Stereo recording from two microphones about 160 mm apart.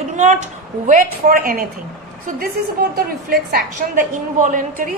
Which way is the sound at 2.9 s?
75° right (ahead or behind).